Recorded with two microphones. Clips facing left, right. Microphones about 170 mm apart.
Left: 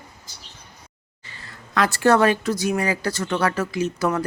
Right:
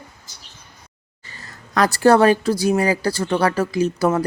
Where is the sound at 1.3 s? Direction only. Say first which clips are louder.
Right 2 dB; 40° right (ahead or behind).